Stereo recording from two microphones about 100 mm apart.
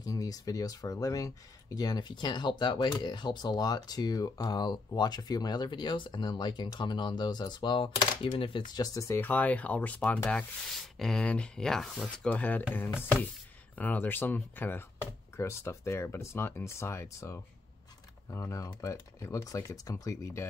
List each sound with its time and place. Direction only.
0.0 s speech: 35° left (ahead or behind); by 8.6 s 55° left (ahead or behind)
8.7 s speech: 35° left (ahead or behind)
9.2 s speech: 15° left (ahead or behind)